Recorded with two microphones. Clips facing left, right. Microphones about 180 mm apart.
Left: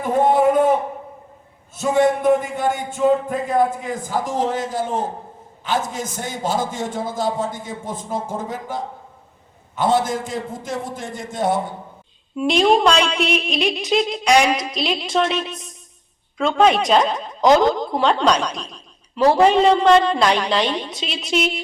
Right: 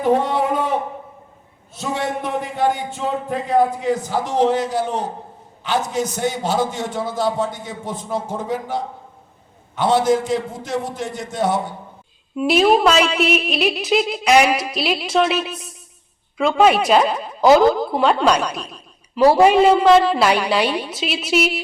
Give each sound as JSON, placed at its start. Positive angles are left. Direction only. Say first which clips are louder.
{"t": 0.1, "sound": "a sound", "louder": "left 4 dB", "side_deg": 50}
{"t": 1.7, "sound": "a man's voice", "louder": "left 7 dB", "side_deg": 50}
{"t": 12.4, "sound": "speech", "louder": "right 1 dB", "side_deg": -5}